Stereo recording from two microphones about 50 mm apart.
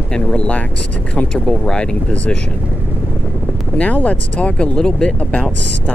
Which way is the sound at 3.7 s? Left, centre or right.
Left.